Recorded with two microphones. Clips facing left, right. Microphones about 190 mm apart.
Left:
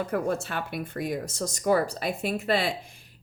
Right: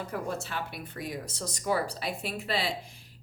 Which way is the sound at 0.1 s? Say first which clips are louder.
Left 6 dB; 55° left (ahead or behind).